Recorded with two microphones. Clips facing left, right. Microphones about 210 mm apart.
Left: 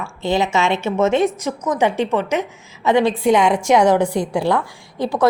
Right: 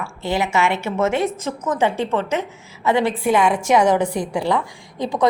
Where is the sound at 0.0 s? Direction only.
20° left (ahead or behind).